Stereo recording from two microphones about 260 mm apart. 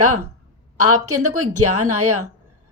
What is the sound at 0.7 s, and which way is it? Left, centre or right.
A woman's voice, right.